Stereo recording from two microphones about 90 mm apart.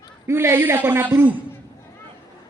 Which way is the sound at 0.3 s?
30° right (ahead or behind).